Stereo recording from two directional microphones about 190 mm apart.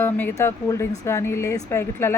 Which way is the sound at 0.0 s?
10° left (ahead or behind).